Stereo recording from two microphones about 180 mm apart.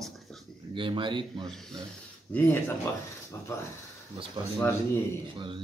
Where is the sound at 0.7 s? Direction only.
30° right (ahead or behind).